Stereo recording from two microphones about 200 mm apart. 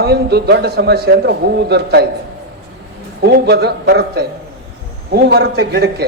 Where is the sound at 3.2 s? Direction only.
50° right (ahead or behind).